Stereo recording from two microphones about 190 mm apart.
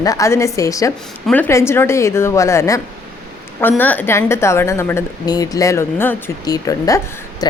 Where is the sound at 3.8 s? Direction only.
10° left (ahead or behind).